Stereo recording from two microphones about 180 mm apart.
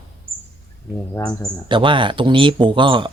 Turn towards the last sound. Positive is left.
turn(degrees=-25)  # may be behind; listen again after turning